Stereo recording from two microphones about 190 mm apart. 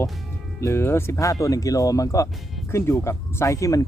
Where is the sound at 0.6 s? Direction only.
15° left (ahead or behind).